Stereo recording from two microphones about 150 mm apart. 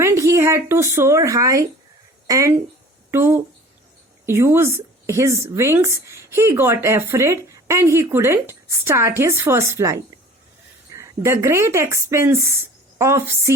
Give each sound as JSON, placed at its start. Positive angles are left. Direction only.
{"t": 0.0, "sound": "a woman's voice", "side_deg": -20}